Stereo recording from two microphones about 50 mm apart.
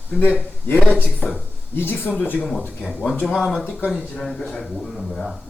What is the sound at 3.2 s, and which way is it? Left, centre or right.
A man's voice, centre.